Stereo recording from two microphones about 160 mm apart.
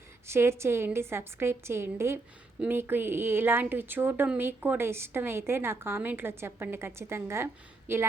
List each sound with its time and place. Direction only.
0.3 s speech: 15° right (ahead or behind)